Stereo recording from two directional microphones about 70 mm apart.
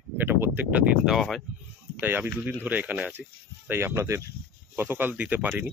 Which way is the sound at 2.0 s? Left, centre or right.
Right.